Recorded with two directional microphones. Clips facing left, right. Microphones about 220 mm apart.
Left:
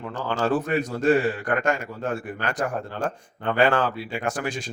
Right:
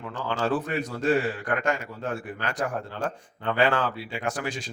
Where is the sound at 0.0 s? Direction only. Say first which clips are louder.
Left 3 dB; 45° left (ahead or behind).